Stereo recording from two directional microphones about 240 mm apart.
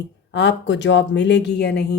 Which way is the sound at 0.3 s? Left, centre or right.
Left.